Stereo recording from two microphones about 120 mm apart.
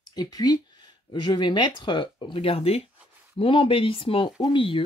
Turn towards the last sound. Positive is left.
turn(degrees=45)  # may be behind; listen again after turning